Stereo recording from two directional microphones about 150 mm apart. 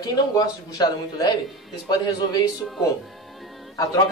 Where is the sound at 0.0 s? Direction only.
25° left (ahead or behind).